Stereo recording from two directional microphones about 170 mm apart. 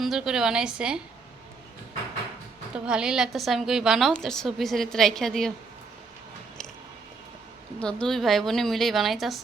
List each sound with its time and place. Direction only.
0.0 s a woman's voice: 5° right (ahead or behind)
2.7 s a woman's voice: 5° right (ahead or behind)
7.8 s a woman's voice: 5° left (ahead or behind)